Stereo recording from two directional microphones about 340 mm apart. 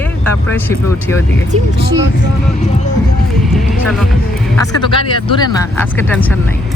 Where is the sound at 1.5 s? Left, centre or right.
Right.